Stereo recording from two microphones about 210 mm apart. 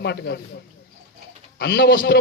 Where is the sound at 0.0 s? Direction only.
50° left (ahead or behind).